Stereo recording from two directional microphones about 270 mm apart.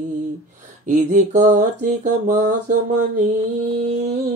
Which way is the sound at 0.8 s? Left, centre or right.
Right.